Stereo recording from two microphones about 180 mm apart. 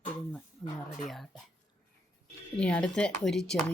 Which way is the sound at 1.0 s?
Centre (ahead or behind).